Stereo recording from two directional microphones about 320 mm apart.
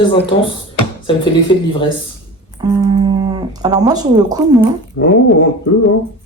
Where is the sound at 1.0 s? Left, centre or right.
Centre.